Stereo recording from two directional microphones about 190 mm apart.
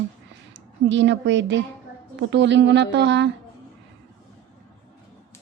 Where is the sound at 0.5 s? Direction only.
70° right (ahead or behind).